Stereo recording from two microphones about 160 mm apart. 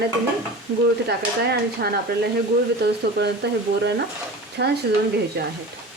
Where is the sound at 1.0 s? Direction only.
90° right.